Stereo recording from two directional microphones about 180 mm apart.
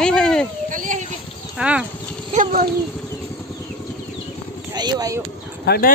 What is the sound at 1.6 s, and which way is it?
Speech, 5° right (ahead or behind).